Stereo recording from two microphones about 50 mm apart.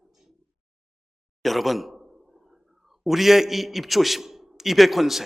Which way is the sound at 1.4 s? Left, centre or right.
Centre.